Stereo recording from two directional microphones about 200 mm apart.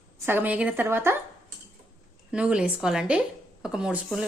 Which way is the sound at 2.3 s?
5° right (ahead or behind).